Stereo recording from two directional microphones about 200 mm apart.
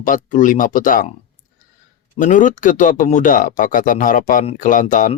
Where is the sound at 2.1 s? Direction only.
40° left (ahead or behind).